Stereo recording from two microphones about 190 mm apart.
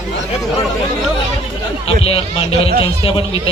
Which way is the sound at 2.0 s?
30° left (ahead or behind).